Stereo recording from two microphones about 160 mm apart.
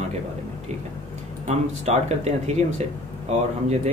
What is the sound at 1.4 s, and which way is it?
Speech, 40° right (ahead or behind).